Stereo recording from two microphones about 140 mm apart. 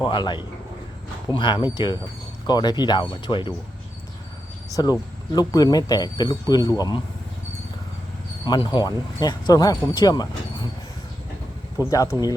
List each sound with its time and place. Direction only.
0.0 s speech: 35° left (ahead or behind)
4.7 s speech: 30° left (ahead or behind)
8.4 s speech: 35° left (ahead or behind)
11.9 s speech: 25° left (ahead or behind)